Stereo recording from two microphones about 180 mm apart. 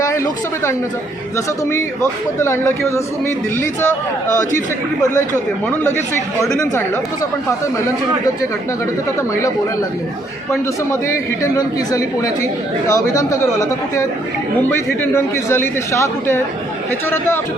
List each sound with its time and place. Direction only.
2.4 s a man's voice: 15° left (ahead or behind)
11.5 s a man's voice: 20° left (ahead or behind)